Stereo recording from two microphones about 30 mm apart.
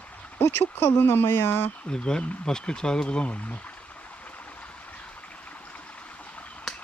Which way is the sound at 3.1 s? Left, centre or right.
Left.